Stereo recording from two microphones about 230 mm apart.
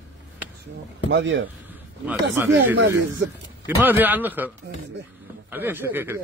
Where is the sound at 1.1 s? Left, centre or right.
Right.